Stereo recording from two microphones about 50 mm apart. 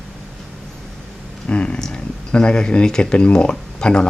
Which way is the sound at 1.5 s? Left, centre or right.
Left.